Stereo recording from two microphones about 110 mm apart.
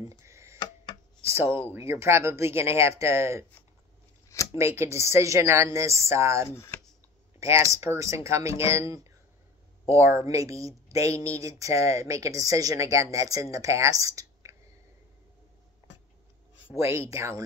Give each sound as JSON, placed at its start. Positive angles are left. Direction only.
{"t": 0.2, "sound": "a sound", "side_deg": -25}
{"t": 1.3, "sound": "a woman's voice", "side_deg": -20}
{"t": 4.6, "sound": "a woman's voice", "side_deg": -25}
{"t": 6.5, "sound": "speech", "side_deg": 20}
{"t": 7.7, "sound": "a woman's voice", "side_deg": -25}
{"t": 16.7, "sound": "a woman's voice", "side_deg": -25}